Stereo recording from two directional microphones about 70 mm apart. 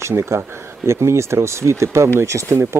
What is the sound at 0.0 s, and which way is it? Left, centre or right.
A man's voice, right.